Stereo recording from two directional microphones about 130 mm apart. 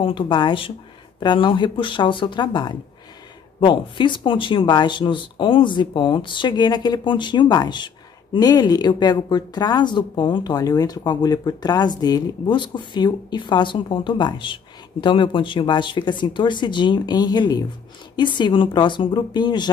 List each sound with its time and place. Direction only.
0.0 s speech: 40° left (ahead or behind)